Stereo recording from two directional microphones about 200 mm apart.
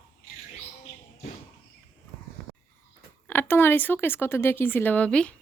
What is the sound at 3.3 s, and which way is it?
Speech, 10° left (ahead or behind).